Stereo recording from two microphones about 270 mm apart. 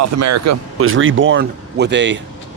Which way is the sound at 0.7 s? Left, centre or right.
Right.